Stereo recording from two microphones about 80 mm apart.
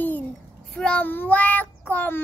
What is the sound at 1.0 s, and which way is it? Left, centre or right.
Cat, left.